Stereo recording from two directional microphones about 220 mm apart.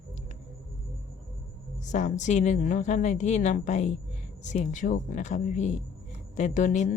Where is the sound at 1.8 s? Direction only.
35° left (ahead or behind).